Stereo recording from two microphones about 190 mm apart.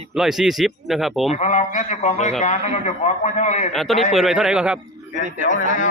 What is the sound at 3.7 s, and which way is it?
Speech, centre (ahead or behind).